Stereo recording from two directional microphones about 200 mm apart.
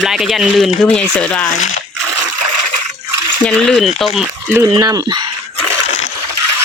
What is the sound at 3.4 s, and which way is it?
Speech, 5° left (ahead or behind).